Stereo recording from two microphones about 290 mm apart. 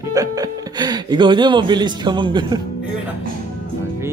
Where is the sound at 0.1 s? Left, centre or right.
Centre.